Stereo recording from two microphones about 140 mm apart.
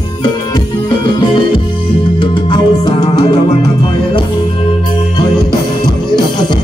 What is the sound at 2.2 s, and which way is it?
Music, 35° left (ahead or behind).